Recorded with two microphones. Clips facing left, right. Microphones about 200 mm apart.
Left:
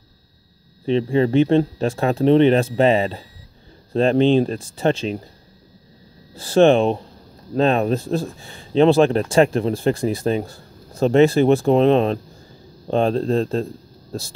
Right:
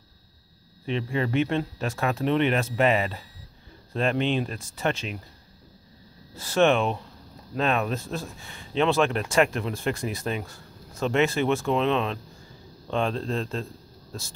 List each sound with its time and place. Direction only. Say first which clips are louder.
0.8 s speech: left 10 dB; 30° left (ahead or behind)
6.3 s speech: left 7 dB; 30° left (ahead or behind)